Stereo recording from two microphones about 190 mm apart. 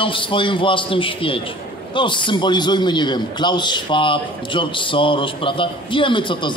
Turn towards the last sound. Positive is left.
turn(degrees=25)  # may be behind; listen again after turning